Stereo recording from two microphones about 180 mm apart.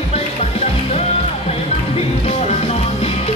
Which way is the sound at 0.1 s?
35° left (ahead or behind).